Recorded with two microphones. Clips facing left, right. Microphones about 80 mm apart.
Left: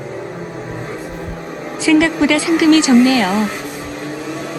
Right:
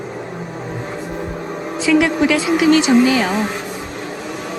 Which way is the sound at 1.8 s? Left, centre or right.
Left.